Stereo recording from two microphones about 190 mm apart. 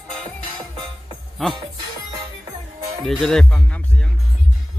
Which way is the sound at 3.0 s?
Centre (ahead or behind).